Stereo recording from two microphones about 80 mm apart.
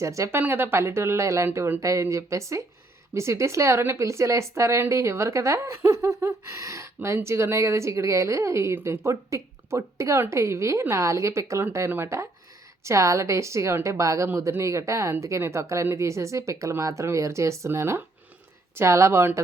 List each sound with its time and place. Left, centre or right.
0.0 s speech: right
0.3 s speech: right
1.8 s speech: right